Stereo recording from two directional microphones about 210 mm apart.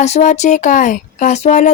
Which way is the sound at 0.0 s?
35° left (ahead or behind).